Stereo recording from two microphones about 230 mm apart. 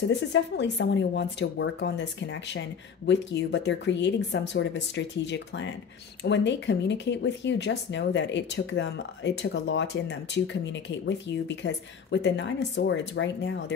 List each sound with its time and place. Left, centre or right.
0.1 s speech: left